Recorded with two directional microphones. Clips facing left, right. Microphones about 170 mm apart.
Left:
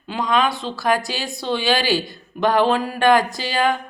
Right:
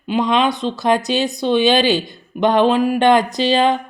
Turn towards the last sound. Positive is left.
turn(degrees=-25)  # may be behind; listen again after turning